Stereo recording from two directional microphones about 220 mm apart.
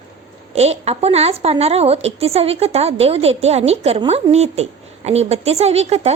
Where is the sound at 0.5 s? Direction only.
30° right (ahead or behind).